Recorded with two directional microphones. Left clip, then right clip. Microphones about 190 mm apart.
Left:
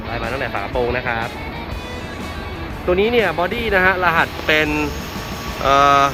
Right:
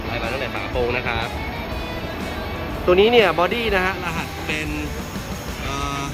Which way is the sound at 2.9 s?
15° right (ahead or behind).